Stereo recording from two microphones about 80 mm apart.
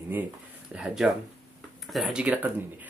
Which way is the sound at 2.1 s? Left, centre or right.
Centre.